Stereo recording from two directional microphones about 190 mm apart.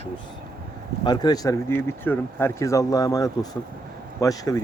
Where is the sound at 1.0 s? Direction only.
20° left (ahead or behind).